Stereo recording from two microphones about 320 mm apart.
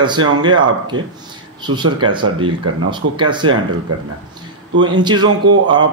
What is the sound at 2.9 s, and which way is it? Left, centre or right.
Speech, centre.